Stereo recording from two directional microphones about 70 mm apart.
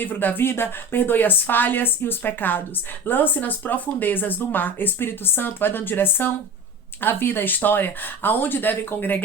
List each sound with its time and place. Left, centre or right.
0.0 s speech: left